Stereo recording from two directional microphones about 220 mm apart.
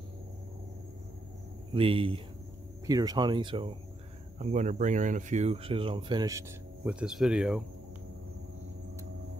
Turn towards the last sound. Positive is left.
turn(degrees=-5)  # may be behind; listen again after turning